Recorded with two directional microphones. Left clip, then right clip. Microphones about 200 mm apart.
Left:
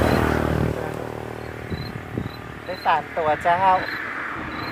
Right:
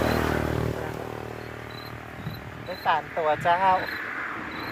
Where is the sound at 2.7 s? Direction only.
15° right (ahead or behind).